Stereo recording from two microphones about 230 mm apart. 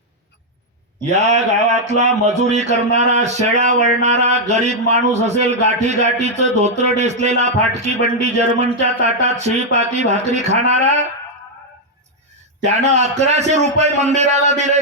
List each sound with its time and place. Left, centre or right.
1.1 s speech: right
12.6 s speech: right